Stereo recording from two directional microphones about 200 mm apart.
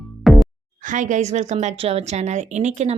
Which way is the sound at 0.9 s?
40° right (ahead or behind).